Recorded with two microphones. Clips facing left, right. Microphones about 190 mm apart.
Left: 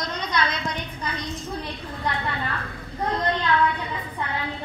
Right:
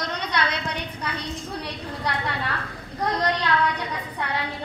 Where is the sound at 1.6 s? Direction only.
80° right.